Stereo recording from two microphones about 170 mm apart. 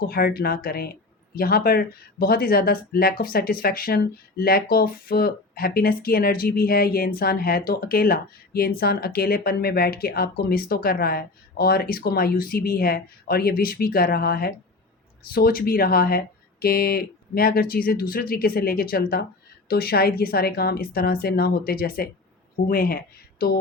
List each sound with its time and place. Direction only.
0.0 s speech: 65° left (ahead or behind)